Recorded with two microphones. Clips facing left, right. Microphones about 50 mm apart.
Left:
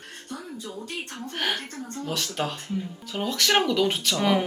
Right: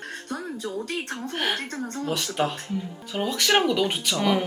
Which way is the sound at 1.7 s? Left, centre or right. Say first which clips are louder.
Right 4 dB; right.